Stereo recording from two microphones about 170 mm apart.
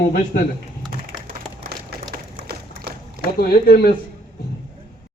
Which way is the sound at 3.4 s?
65° left (ahead or behind).